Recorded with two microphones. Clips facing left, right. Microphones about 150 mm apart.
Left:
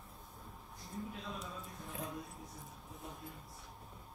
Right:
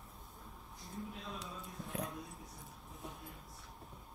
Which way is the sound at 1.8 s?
Centre (ahead or behind).